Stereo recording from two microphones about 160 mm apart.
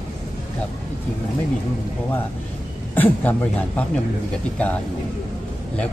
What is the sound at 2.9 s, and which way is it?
Speech, 10° left (ahead or behind).